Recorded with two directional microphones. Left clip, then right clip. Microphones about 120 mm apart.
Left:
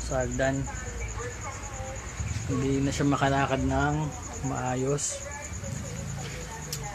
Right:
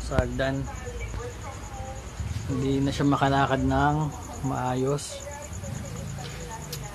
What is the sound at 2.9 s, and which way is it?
Speech, 15° right (ahead or behind).